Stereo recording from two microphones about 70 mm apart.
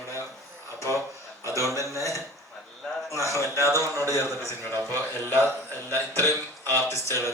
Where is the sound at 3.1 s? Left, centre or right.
Right.